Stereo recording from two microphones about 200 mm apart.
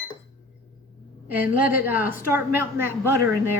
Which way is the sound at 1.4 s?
50° left (ahead or behind).